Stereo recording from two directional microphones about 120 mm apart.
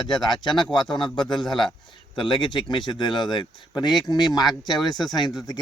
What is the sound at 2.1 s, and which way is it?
A man's voice, 40° left (ahead or behind).